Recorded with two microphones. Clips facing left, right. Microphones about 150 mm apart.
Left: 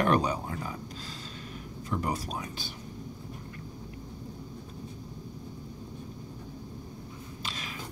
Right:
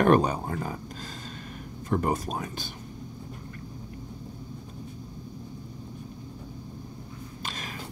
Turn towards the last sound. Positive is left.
turn(degrees=-45)  # may be behind; listen again after turning